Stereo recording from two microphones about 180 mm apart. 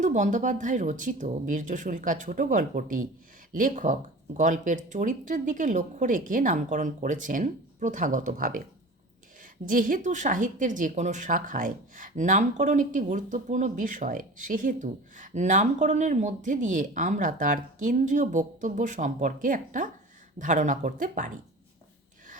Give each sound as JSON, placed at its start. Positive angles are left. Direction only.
{"t": 0.0, "sound": "speech", "side_deg": -45}